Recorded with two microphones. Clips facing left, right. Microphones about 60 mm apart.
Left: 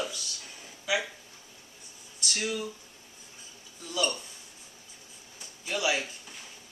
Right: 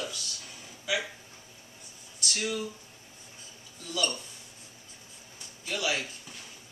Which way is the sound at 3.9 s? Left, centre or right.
Centre.